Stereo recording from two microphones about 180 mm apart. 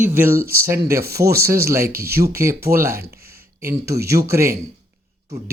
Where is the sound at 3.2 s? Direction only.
15° right (ahead or behind).